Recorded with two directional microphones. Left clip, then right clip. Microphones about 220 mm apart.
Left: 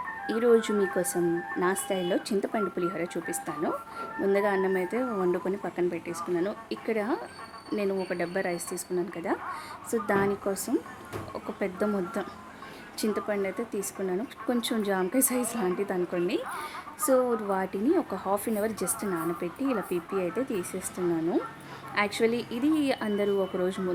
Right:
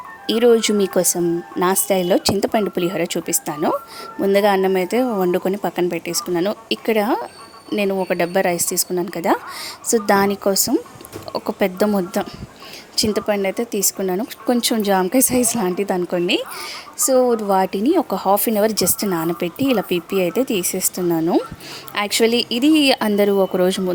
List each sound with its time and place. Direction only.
0.3 s speech: 35° right (ahead or behind)